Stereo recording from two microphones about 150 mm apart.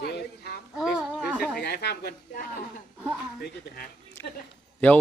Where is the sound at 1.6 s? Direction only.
90° left.